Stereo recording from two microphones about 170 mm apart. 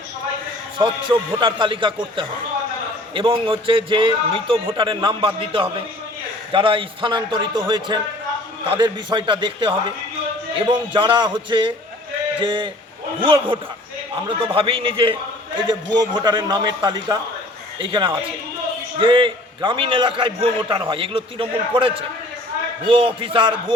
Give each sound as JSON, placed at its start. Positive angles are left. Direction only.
{"t": 0.8, "sound": "a man's voice", "side_deg": -30}